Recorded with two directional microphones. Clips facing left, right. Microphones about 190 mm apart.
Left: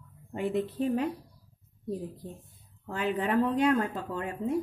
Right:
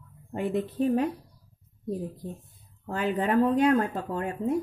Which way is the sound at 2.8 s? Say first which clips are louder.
Right 3 dB; 40° right (ahead or behind).